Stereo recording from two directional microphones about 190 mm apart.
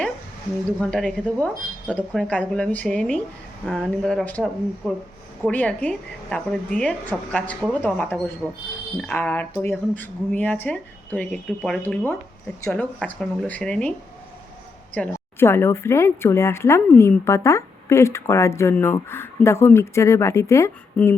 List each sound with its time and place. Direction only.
0.8 s speech: 5° left (ahead or behind)
14.9 s speech: 10° left (ahead or behind)